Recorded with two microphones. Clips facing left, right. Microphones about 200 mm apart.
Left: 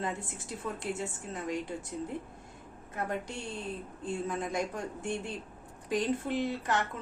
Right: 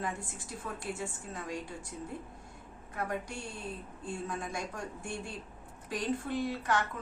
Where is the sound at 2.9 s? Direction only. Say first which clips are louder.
Left 1 dB; 20° left (ahead or behind).